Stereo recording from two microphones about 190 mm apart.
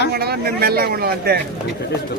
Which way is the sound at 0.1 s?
55° right (ahead or behind).